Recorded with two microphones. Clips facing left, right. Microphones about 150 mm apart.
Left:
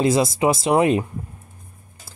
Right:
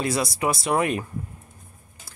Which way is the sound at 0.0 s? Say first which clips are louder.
Left 7 dB; 25° left (ahead or behind).